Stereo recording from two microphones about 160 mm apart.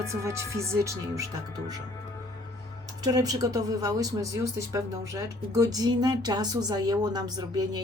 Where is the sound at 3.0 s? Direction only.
25° right (ahead or behind).